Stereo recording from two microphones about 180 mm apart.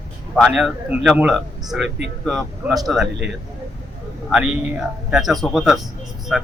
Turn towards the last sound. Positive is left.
turn(degrees=0)  # may be behind; listen again after turning